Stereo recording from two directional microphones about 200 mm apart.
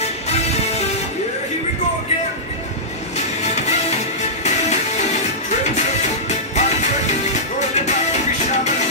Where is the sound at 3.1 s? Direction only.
35° left (ahead or behind).